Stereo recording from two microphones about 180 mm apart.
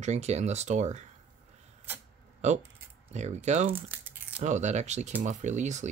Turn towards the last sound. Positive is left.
turn(degrees=-40)  # may be behind; listen again after turning